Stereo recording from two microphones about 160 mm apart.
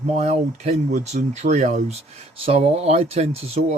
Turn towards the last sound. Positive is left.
turn(degrees=-45)  # may be behind; listen again after turning